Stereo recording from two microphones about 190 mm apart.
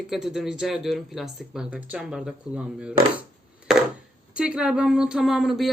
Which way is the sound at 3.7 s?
Centre (ahead or behind).